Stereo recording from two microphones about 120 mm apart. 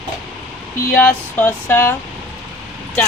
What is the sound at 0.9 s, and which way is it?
Speech, 20° left (ahead or behind).